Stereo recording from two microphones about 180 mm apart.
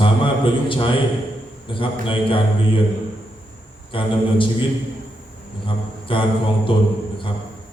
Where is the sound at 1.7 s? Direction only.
30° left (ahead or behind).